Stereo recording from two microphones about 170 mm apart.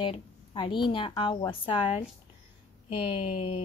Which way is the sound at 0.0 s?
25° left (ahead or behind).